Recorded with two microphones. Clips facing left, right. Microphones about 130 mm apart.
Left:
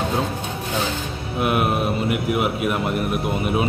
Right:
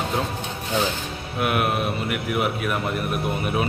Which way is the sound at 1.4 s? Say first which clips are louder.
Left 2 dB; 25° left (ahead or behind).